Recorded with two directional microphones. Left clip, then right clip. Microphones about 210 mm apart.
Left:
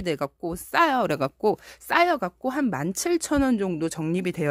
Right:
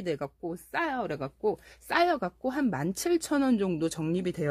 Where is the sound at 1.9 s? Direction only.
20° left (ahead or behind).